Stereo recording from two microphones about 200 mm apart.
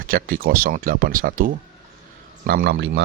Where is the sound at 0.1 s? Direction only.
45° right (ahead or behind).